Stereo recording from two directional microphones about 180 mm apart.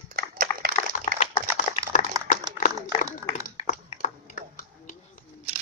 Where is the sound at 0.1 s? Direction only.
55° right (ahead or behind).